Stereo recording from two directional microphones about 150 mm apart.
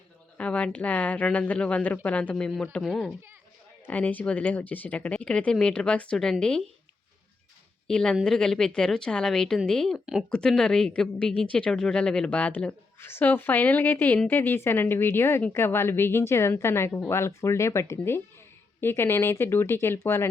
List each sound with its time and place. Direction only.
0.3 s a woman's voice: 10° left (ahead or behind)
7.9 s a woman's voice: 5° left (ahead or behind)